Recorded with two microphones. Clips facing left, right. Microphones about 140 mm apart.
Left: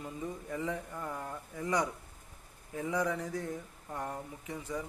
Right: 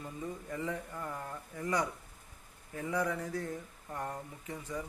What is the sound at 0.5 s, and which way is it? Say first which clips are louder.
Speech: left 2 dB; 15° left (ahead or behind).